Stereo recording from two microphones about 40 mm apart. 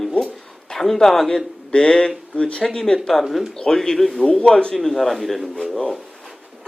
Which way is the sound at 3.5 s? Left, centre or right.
Centre.